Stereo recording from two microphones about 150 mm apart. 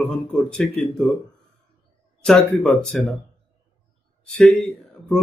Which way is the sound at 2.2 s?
5° left (ahead or behind).